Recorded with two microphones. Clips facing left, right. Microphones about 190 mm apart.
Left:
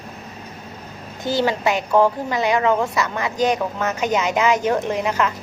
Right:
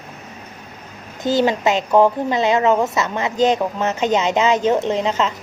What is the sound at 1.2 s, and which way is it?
A woman's voice, 20° right (ahead or behind).